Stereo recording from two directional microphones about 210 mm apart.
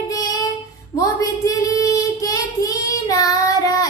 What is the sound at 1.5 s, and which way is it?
Child singing, 15° left (ahead or behind).